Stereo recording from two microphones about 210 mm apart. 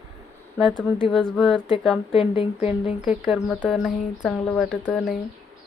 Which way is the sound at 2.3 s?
25° left (ahead or behind).